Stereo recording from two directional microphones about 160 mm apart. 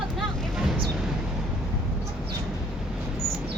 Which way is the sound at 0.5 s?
5° right (ahead or behind).